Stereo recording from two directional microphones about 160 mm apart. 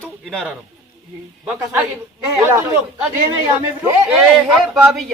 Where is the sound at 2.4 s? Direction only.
15° right (ahead or behind).